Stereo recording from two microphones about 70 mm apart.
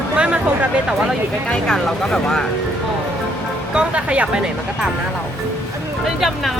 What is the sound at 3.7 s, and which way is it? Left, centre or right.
Speech, centre.